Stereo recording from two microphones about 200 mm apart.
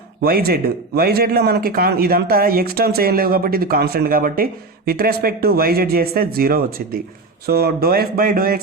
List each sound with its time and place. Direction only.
0.2 s a man's voice: 50° right (ahead or behind)